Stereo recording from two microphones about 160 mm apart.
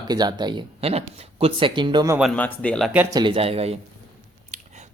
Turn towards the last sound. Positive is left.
turn(degrees=-40)  # may be behind; listen again after turning